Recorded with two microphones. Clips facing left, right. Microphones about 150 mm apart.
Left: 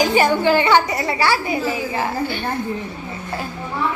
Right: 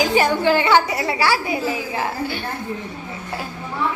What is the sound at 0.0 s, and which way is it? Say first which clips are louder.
A woman's voice: left 1 dB; centre (ahead or behind).